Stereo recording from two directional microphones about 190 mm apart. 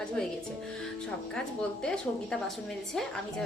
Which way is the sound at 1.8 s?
5° left (ahead or behind).